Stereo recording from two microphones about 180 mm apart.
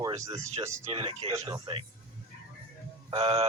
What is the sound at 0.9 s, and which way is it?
Speech, 30° right (ahead or behind).